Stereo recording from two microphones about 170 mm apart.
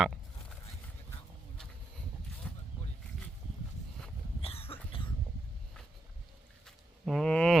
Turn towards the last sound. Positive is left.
turn(degrees=5)  # may be behind; listen again after turning